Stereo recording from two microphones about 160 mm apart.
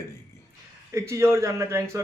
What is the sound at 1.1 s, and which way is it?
Speech, 15° right (ahead or behind).